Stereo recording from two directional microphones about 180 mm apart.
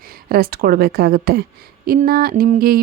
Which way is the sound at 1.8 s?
55° right (ahead or behind).